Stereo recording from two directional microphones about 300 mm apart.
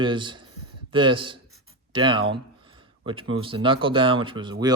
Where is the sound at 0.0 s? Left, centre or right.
Centre.